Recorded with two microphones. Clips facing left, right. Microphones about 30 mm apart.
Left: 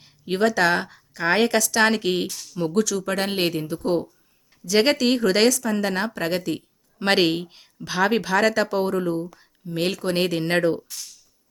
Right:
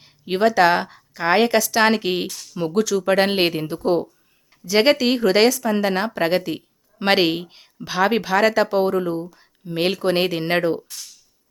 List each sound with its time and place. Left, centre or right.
0.0 s a woman's voice: centre
3.0 s speech: right
3.8 s speech: centre
9.6 s speech: right